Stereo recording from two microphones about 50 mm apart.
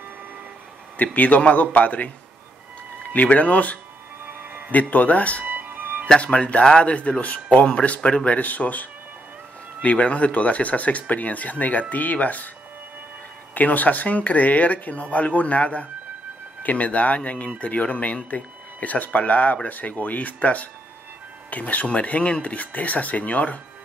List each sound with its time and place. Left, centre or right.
0.9 s speech: left
3.1 s speech: left
4.3 s a sound: right
4.7 s speech: left
5.4 s music: right
6.0 s speech: left
8.3 s speech: left
13.6 s speech: left